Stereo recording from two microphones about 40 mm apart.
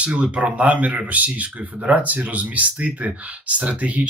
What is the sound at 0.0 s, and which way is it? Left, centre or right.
Speech, right.